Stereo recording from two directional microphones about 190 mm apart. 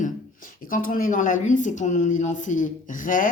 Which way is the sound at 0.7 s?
45° left (ahead or behind).